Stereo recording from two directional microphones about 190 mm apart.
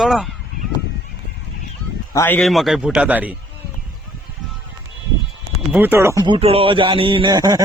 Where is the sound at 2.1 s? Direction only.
10° left (ahead or behind); by 3.3 s 10° right (ahead or behind).